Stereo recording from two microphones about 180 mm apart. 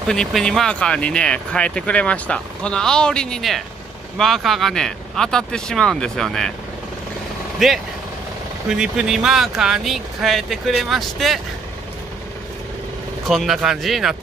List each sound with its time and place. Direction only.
0.1 s speech: centre (ahead or behind)
7.5 s speech: centre (ahead or behind)
13.3 s speech: centre (ahead or behind)